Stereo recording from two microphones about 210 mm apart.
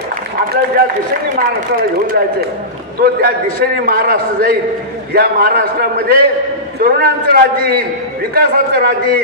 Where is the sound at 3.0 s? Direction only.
45° right (ahead or behind).